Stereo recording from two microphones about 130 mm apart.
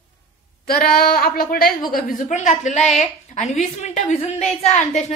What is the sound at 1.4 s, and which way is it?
A woman's voice, 90° left.